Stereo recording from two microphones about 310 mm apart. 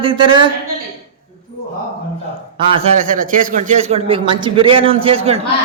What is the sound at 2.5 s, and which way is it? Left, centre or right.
A man's voice, right.